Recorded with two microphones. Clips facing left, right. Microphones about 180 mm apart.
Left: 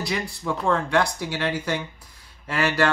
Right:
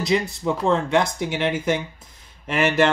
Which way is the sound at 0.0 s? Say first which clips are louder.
Right 6 dB; 20° right (ahead or behind).